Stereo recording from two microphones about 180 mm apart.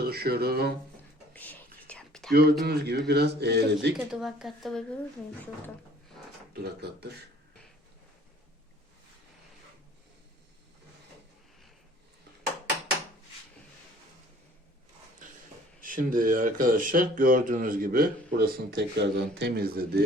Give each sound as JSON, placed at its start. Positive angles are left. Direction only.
{"t": 0.0, "sound": "a man's voice", "side_deg": -60}
{"t": 1.3, "sound": "whispering", "side_deg": 10}
{"t": 2.3, "sound": "a man's voice", "side_deg": -60}
{"t": 3.9, "sound": "a woman's voice", "side_deg": 0}
{"t": 6.6, "sound": "a man's voice", "side_deg": -65}
{"t": 15.8, "sound": "a man's voice", "side_deg": -50}